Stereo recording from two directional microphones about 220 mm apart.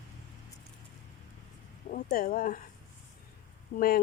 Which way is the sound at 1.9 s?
40° left (ahead or behind).